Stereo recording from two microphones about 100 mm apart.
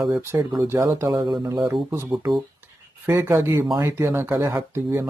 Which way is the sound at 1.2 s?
45° right (ahead or behind).